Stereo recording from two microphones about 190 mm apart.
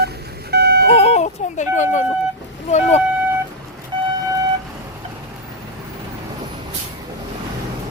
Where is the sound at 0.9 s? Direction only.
35° left (ahead or behind).